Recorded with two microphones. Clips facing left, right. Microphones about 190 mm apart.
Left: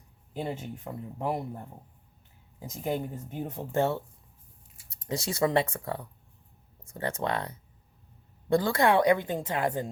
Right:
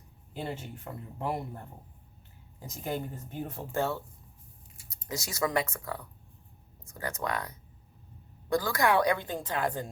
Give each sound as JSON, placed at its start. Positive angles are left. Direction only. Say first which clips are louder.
{"t": 0.3, "sound": "a woman's voice", "louder": "left 3 dB", "side_deg": 15}